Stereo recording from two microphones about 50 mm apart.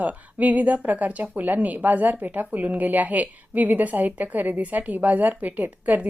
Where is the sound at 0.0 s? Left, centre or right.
Right.